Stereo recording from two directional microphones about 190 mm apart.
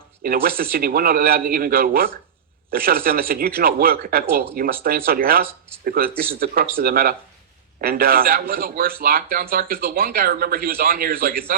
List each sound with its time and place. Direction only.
0.2 s a man's voice: 50° right (ahead or behind)